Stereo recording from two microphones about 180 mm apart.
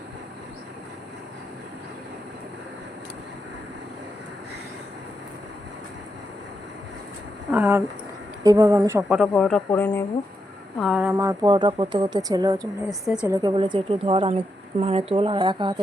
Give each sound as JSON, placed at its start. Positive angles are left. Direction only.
{"t": 7.5, "sound": "speech", "side_deg": -10}
{"t": 9.0, "sound": "speech", "side_deg": 0}
{"t": 10.8, "sound": "speech", "side_deg": -5}
{"t": 11.2, "sound": "speech", "side_deg": -20}
{"t": 13.1, "sound": "speech", "side_deg": -5}
{"t": 13.4, "sound": "speech", "side_deg": -25}